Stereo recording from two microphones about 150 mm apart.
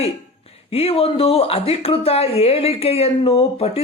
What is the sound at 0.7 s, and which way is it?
Speech, 40° left (ahead or behind).